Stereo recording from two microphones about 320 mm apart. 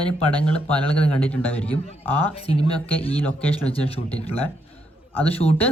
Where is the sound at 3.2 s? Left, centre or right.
Centre.